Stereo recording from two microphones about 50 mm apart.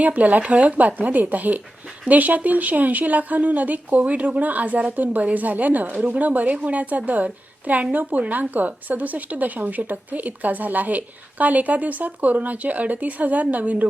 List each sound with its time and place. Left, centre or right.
0.0 s speech: right